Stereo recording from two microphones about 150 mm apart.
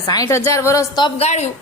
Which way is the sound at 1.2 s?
45° left (ahead or behind).